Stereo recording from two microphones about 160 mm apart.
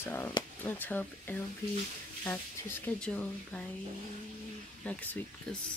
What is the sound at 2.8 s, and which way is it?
Speech, 10° left (ahead or behind).